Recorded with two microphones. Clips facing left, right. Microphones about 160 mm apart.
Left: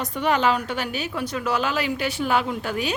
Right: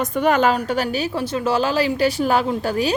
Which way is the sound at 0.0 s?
45° right (ahead or behind).